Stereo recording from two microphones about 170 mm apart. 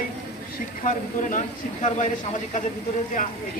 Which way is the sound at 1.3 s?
45° left (ahead or behind).